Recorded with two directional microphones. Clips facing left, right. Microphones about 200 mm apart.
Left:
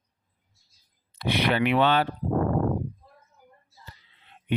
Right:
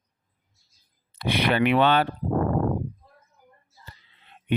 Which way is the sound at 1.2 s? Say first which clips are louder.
Right 2 dB; 55° right (ahead or behind).